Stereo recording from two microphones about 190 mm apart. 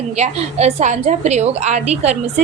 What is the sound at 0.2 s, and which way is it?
Speech, 35° right (ahead or behind).